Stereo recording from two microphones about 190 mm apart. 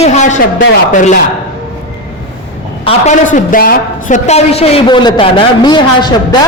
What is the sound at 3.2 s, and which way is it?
Speech, 45° left (ahead or behind).